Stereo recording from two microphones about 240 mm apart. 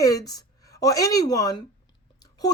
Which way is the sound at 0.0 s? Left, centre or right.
Centre.